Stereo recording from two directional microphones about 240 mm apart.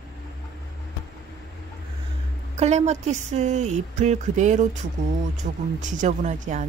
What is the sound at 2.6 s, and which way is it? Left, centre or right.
Speech, right.